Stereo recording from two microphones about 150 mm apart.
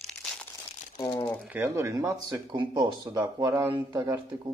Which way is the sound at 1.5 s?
15° right (ahead or behind).